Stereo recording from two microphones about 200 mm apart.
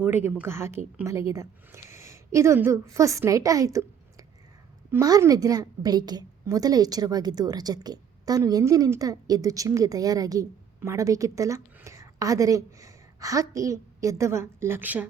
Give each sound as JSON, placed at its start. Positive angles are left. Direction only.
{"t": 0.0, "sound": "a woman's voice", "side_deg": -10}